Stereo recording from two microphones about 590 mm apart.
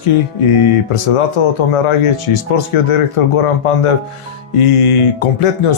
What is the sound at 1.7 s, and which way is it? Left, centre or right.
Speech, left.